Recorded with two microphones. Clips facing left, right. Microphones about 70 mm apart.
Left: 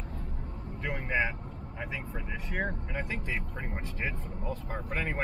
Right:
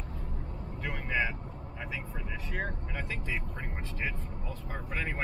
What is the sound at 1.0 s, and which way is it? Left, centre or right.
Speech, left.